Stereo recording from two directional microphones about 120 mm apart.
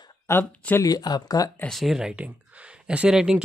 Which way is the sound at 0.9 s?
35° left (ahead or behind).